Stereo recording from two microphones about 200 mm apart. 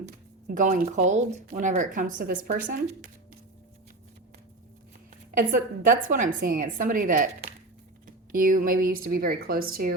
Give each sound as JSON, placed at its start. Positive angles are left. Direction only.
{"t": 0.0, "sound": "speech", "side_deg": -40}
{"t": 5.5, "sound": "a woman's voice", "side_deg": -40}